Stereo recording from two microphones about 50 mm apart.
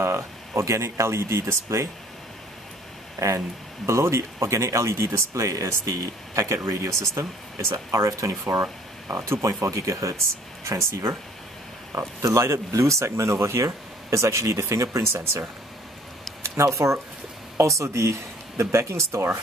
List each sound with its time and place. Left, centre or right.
0.0 s speech: right
3.2 s speech: right
9.1 s speech: right
10.6 s speech: right
11.9 s speech: right
16.4 s speech: right